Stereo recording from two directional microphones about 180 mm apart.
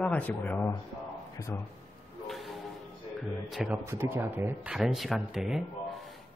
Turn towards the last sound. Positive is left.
turn(degrees=-5)  # may be behind; listen again after turning